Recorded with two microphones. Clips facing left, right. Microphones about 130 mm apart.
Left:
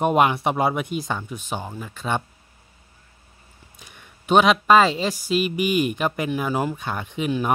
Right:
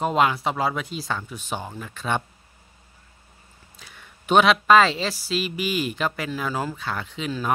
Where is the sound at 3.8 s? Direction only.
15° left (ahead or behind).